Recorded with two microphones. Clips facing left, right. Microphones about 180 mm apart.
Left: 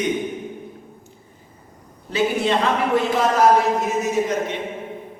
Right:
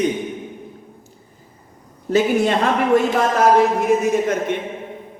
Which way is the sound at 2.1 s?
45° right (ahead or behind).